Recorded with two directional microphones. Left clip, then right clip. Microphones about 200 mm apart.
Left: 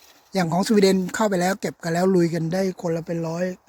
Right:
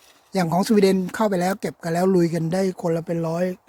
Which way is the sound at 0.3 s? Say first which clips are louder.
Right 1 dB; 10° right (ahead or behind).